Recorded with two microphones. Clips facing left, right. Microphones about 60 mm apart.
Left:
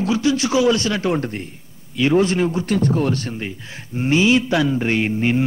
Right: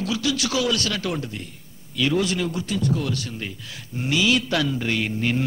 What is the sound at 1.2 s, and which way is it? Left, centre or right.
A man's voice, left.